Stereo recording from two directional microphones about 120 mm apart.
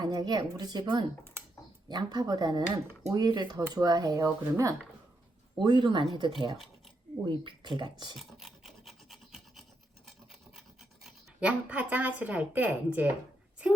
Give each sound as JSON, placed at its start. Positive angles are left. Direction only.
{"t": 0.0, "sound": "a woman's voice", "side_deg": -35}
{"t": 5.5, "sound": "a woman's voice", "side_deg": -40}
{"t": 8.1, "sound": "filing", "side_deg": 0}
{"t": 11.0, "sound": "speech", "side_deg": -10}